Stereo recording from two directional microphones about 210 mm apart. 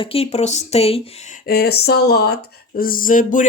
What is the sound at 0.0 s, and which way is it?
Speech, 25° left (ahead or behind).